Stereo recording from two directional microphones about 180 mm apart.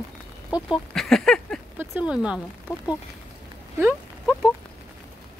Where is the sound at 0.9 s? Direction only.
5° left (ahead or behind).